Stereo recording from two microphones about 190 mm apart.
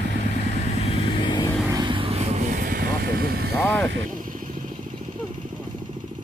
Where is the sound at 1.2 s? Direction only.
20° left (ahead or behind).